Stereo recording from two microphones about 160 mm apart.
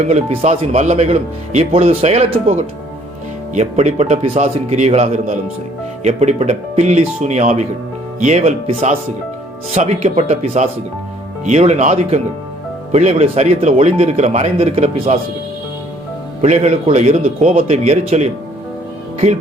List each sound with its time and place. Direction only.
0.0 s speech: 45° right (ahead or behind)
16.4 s speech: 45° right (ahead or behind)